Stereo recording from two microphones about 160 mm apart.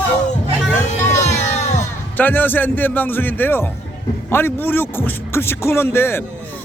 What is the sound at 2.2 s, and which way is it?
A man's voice, 10° left (ahead or behind).